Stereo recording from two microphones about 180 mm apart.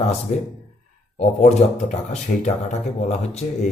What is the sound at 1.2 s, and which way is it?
Speech, 40° left (ahead or behind).